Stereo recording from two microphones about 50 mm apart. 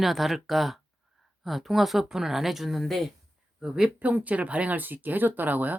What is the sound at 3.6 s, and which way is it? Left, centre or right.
Speech, centre.